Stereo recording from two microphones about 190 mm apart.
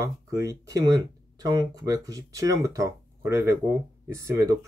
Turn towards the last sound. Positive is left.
turn(degrees=-15)  # may be behind; listen again after turning